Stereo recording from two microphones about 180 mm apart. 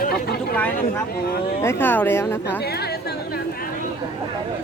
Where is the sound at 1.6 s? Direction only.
15° left (ahead or behind).